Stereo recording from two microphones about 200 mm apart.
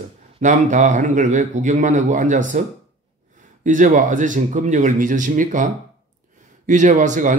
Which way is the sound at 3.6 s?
40° right (ahead or behind).